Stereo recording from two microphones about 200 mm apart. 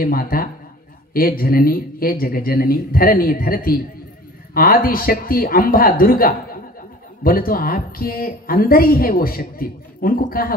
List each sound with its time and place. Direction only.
0.0 s a woman's voice: 45° left (ahead or behind)